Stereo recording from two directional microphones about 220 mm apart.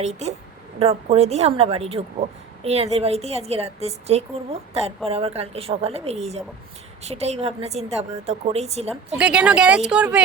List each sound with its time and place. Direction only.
0.0 s a woman's voice: 30° right (ahead or behind)
9.1 s speech: 5° right (ahead or behind)